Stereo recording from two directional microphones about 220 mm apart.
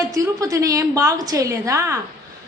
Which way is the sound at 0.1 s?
15° right (ahead or behind).